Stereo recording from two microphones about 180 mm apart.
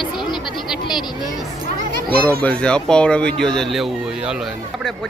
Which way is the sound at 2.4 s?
5° left (ahead or behind).